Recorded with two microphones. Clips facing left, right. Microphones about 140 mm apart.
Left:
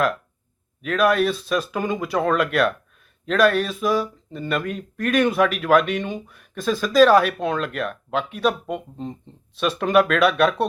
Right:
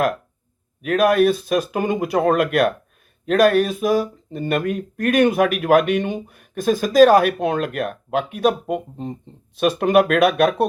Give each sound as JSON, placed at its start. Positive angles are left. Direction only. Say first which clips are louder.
{"t": 0.8, "sound": "speech", "louder": "right 3 dB", "side_deg": -50}
{"t": 9.6, "sound": "speech", "louder": "right 3 dB", "side_deg": -45}